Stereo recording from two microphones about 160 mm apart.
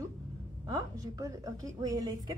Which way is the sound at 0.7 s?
20° right (ahead or behind).